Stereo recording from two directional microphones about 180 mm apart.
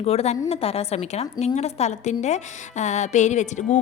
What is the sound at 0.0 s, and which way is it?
A woman's voice, 35° left (ahead or behind).